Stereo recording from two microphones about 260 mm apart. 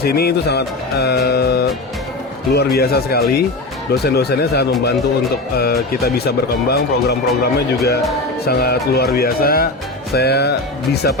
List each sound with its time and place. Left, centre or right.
0.0 s speech: left